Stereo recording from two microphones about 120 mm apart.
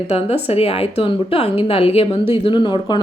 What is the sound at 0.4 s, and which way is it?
Speech, 55° left (ahead or behind).